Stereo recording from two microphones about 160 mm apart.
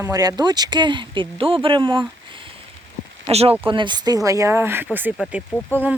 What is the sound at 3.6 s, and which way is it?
Speech, 30° right (ahead or behind).